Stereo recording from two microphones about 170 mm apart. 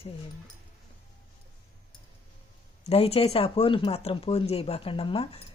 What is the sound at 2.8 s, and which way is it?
Speech, 35° left (ahead or behind).